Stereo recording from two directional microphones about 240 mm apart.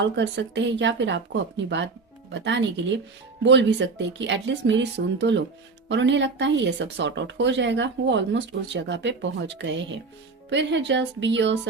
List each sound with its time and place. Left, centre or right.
0.0 s speech: right